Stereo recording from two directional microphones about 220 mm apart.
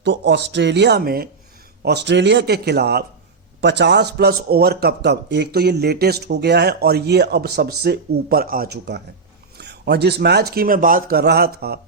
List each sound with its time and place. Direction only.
0.0 s a man's voice: 50° right (ahead or behind)